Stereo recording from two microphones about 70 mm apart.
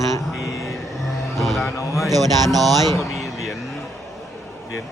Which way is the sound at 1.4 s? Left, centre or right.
Centre.